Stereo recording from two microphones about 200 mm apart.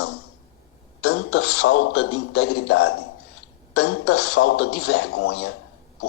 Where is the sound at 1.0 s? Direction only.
90° left.